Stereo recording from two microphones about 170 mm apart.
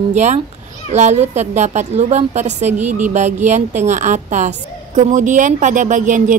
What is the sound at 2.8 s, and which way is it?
Music, 10° right (ahead or behind).